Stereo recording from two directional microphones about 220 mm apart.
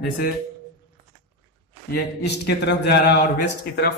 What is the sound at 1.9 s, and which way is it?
A man's voice, 50° left (ahead or behind).